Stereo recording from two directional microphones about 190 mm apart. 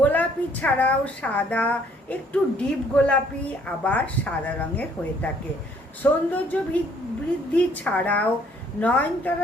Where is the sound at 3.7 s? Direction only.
5° left (ahead or behind).